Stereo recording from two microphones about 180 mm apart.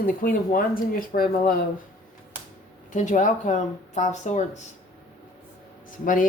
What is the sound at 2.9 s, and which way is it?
Speech, 45° left (ahead or behind).